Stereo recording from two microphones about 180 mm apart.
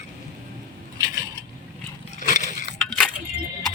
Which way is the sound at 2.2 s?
45° left (ahead or behind).